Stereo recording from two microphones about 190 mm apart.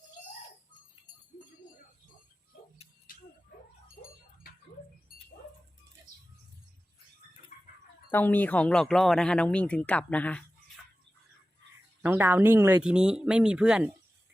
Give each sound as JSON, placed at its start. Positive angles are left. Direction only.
{"t": 7.5, "sound": "chicken", "side_deg": 40}
{"t": 8.1, "sound": "speech", "side_deg": 10}
{"t": 12.0, "sound": "speech", "side_deg": -10}